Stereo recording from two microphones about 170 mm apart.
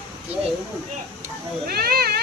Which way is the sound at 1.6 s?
65° right (ahead or behind).